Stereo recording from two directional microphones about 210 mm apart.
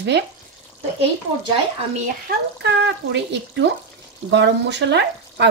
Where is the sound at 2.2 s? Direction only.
55° right (ahead or behind).